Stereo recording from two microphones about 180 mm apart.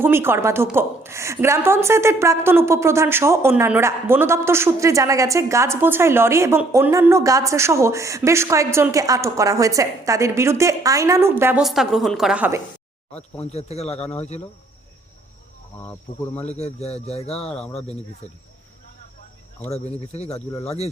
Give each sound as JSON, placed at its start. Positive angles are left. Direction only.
{"t": 0.0, "sound": "a woman's voice", "side_deg": -15}
{"t": 11.6, "sound": "a woman's voice", "side_deg": 0}
{"t": 13.4, "sound": "speech", "side_deg": 35}
{"t": 15.9, "sound": "speech", "side_deg": 10}
{"t": 16.5, "sound": "speech", "side_deg": 35}
{"t": 19.7, "sound": "speech", "side_deg": 35}